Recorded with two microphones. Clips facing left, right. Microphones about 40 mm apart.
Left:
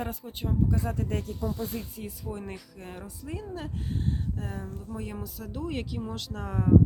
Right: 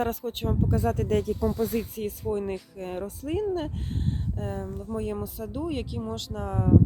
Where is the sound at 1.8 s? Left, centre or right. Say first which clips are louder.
Right 8 dB; right.